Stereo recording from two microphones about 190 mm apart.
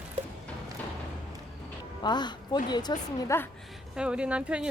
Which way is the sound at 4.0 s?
5° right (ahead or behind).